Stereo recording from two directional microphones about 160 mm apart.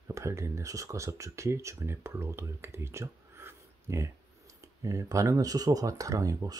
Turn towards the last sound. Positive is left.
turn(degrees=-20)  # may be behind; listen again after turning